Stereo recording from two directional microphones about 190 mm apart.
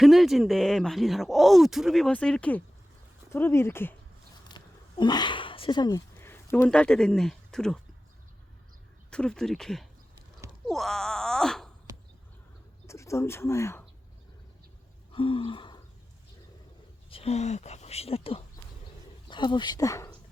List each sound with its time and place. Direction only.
0.0 s speech: centre (ahead or behind)
4.4 s a sound: 25° left (ahead or behind)
6.1 s speech: 10° left (ahead or behind)
9.0 s speech: 5° left (ahead or behind)
10.7 s groan: centre (ahead or behind)
12.9 s speech: 15° left (ahead or behind)
15.1 s a sound: 30° left (ahead or behind)
17.1 s speech: 30° left (ahead or behind)